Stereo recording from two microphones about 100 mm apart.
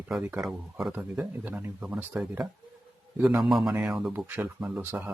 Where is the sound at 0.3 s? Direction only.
5° right (ahead or behind).